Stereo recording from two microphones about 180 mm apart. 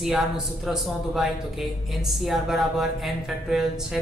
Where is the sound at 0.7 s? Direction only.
Centre (ahead or behind).